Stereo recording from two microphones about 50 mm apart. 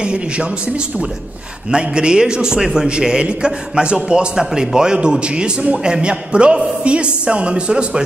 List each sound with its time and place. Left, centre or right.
0.0 s a man's voice: centre